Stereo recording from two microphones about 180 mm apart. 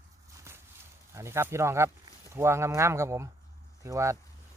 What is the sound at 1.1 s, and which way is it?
Speech, 15° right (ahead or behind).